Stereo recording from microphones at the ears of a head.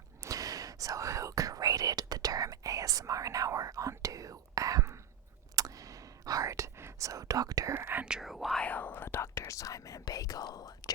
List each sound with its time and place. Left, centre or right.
0.2 s whispering: right
8.2 s whispering: centre
8.6 s whispering: left